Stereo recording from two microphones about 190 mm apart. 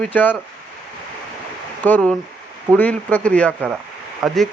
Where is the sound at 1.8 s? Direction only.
10° left (ahead or behind).